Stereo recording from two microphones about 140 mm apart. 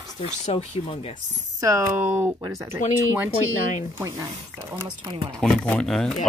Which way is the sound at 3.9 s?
20° right (ahead or behind).